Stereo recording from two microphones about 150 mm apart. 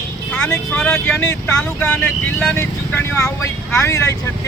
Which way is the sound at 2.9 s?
20° left (ahead or behind).